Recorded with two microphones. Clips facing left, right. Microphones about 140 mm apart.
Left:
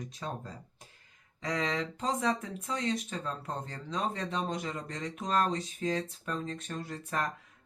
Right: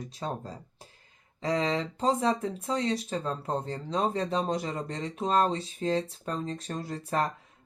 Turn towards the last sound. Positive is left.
turn(degrees=-30)  # may be behind; listen again after turning